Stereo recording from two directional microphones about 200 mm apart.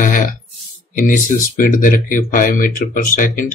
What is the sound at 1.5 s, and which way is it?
Speech, 40° left (ahead or behind).